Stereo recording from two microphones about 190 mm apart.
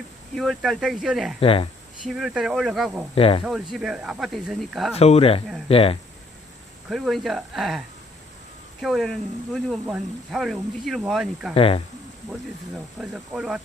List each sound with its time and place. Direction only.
0.3 s speech: centre (ahead or behind)
1.4 s speech: 30° left (ahead or behind)
2.0 s speech: centre (ahead or behind)
3.2 s speech: 30° left (ahead or behind)
3.4 s speech: 5° right (ahead or behind)
4.9 s speech: 35° left (ahead or behind)
6.9 s speech: centre (ahead or behind)
8.8 s speech: centre (ahead or behind)
11.5 s speech: 30° left (ahead or behind)
13.0 s speech: 5° right (ahead or behind)